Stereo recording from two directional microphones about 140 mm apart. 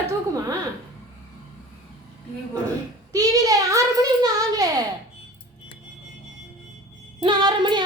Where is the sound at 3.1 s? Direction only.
25° right (ahead or behind).